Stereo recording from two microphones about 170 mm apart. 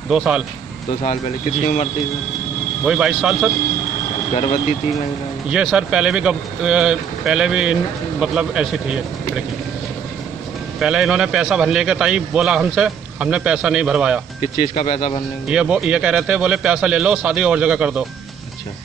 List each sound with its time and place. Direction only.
0.1 s a man's voice: 5° right (ahead or behind)
1.0 s speech: 45° left (ahead or behind)
2.8 s a man's voice: 5° right (ahead or behind)
4.3 s speech: 40° left (ahead or behind)
5.5 s a man's voice: 5° right (ahead or behind)
10.8 s a man's voice: 5° right (ahead or behind)
14.4 s speech: 40° left (ahead or behind)
15.4 s a man's voice: 5° right (ahead or behind)